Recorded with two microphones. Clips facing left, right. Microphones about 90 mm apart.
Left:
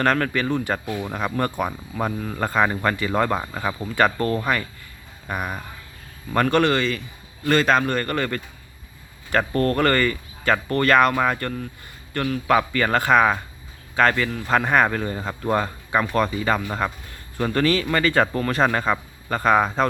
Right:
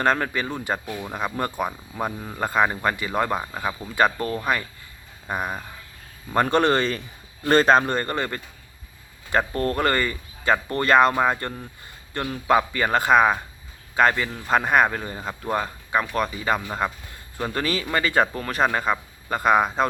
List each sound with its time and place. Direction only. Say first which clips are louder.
0.0 s speech: left 2 dB; 15° right (ahead or behind)
5.3 s a man's voice: even; 25° right (ahead or behind)
6.6 s a man's voice: even; 35° right (ahead or behind); by 15.4 s 10° right (ahead or behind)
15.4 s speech: left 3 dB; centre (ahead or behind)